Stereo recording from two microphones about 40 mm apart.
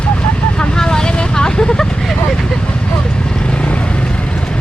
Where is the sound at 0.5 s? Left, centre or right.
Centre.